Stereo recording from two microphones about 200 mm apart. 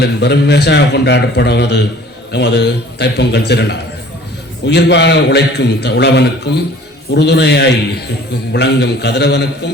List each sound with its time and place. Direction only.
0.0 s a man's voice: 55° left (ahead or behind)